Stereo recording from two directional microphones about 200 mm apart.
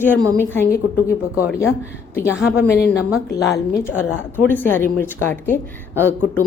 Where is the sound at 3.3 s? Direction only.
15° left (ahead or behind).